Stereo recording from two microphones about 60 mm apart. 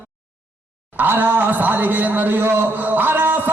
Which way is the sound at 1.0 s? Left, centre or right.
Right.